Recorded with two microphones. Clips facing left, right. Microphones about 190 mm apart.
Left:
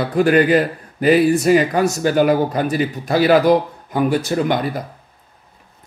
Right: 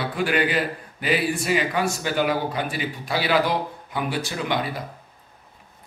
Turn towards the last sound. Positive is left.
turn(degrees=45)  # may be behind; listen again after turning